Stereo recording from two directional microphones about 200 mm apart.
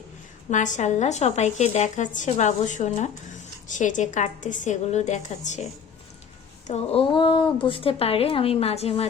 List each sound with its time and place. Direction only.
0.5 s a woman's voice: 40° left (ahead or behind)
6.7 s speech: 30° left (ahead or behind)